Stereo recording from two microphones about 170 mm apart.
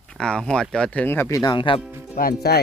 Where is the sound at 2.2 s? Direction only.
65° left (ahead or behind).